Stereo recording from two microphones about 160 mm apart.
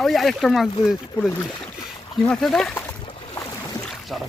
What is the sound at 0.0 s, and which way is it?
Speech, centre (ahead or behind).